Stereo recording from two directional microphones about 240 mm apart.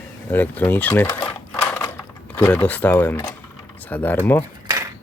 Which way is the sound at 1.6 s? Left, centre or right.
Centre.